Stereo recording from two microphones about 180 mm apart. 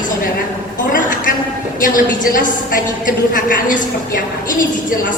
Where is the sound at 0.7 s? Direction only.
50° left (ahead or behind).